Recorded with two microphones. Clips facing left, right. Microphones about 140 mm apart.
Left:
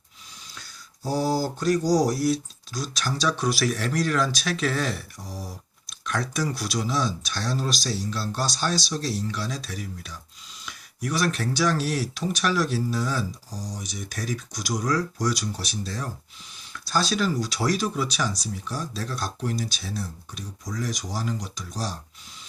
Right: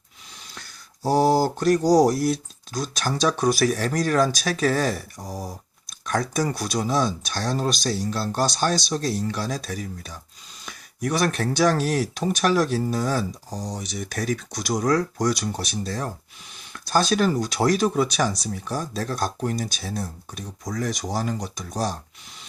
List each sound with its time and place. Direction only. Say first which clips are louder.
1.0 s speech: right 6 dB; 55° right (ahead or behind)